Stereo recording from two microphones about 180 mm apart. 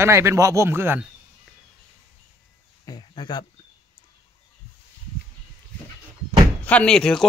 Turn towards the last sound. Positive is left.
turn(degrees=5)  # may be behind; listen again after turning